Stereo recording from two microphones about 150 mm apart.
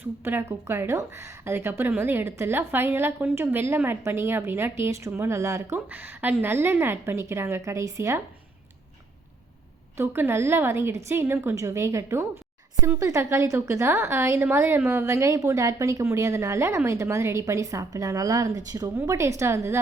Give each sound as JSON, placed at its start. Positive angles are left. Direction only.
{"t": 0.3, "sound": "speech", "side_deg": -15}
{"t": 10.0, "sound": "a woman's voice", "side_deg": -15}